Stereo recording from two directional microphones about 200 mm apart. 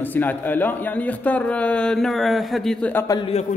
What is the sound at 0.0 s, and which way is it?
A man's voice, 10° left (ahead or behind).